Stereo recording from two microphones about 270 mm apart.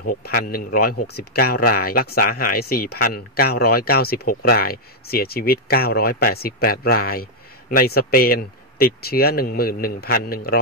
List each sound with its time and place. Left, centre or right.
0.0 s speech: left